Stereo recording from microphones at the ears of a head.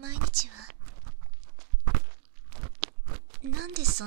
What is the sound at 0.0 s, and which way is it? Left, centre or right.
Whispering, right.